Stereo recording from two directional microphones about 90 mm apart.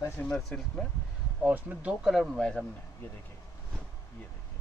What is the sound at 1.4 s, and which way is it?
Speech, 15° right (ahead or behind).